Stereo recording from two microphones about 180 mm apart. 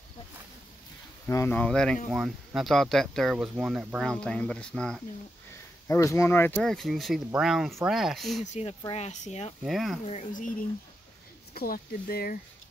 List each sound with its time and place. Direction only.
1.2 s speech: 15° left (ahead or behind)
5.9 s speech: 15° left (ahead or behind); by 8.5 s centre (ahead or behind)
8.5 s speech: 35° left (ahead or behind)
9.6 s speech: centre (ahead or behind)
10.0 s speech: 40° left (ahead or behind)